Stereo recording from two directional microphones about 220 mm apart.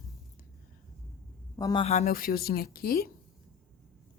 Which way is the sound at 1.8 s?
30° left (ahead or behind).